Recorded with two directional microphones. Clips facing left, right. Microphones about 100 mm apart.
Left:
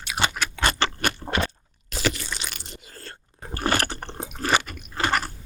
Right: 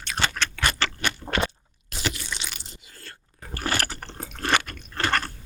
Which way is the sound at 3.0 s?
30° left (ahead or behind).